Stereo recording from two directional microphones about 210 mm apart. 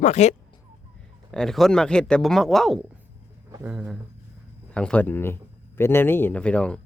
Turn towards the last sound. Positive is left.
turn(degrees=5)  # may be behind; listen again after turning